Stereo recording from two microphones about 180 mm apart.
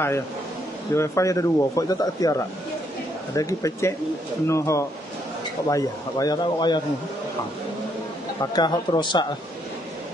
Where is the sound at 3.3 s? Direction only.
20° left (ahead or behind).